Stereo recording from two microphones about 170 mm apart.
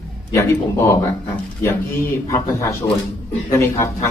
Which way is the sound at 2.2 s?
15° left (ahead or behind).